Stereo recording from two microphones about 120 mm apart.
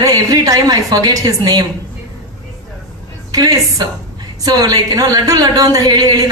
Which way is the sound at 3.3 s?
30° right (ahead or behind).